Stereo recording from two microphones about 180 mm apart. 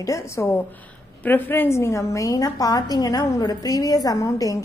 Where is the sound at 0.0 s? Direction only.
15° left (ahead or behind).